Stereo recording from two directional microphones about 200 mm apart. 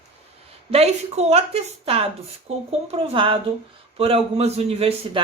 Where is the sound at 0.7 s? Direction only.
30° right (ahead or behind).